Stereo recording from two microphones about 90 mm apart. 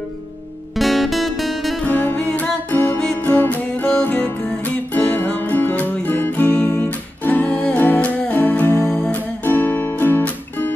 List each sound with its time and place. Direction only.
0.7 s music: centre (ahead or behind)
1.9 s music: 20° left (ahead or behind)
8.8 s music: 10° left (ahead or behind)